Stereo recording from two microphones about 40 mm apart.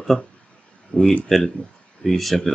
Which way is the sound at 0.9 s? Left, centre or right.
Left.